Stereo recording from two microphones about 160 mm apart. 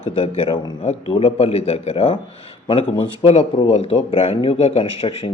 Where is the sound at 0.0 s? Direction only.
35° left (ahead or behind).